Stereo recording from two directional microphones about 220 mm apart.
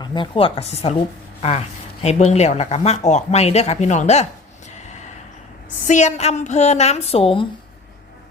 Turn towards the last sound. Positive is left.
turn(degrees=25)  # may be behind; listen again after turning